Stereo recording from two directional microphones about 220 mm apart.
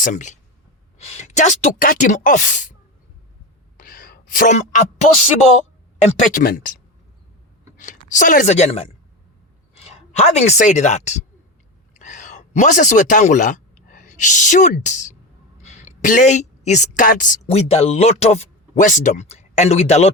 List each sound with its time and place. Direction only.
0.0 s speech: 35° left (ahead or behind)
3.8 s a sound: 40° left (ahead or behind)
6.0 s speech: 35° left (ahead or behind)
7.8 s a woman's voice: 35° left (ahead or behind)